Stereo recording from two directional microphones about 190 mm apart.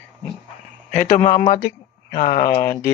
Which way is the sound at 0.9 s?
40° left (ahead or behind).